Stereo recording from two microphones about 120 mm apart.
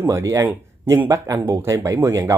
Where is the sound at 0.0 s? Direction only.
25° right (ahead or behind).